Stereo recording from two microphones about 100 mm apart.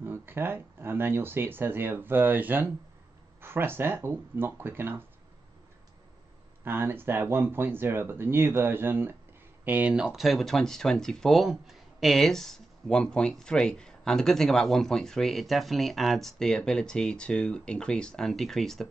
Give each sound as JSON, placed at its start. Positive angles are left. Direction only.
{"t": 0.0, "sound": "speech", "side_deg": -20}
{"t": 6.6, "sound": "speech", "side_deg": -20}